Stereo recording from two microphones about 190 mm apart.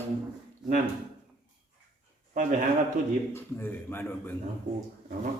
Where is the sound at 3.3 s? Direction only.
10° left (ahead or behind).